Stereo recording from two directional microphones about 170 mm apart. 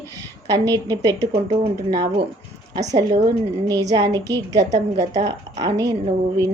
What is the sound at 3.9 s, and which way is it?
Speech, 25° right (ahead or behind).